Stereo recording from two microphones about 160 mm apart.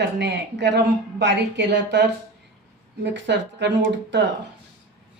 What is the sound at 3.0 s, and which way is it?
Speech, 90° right.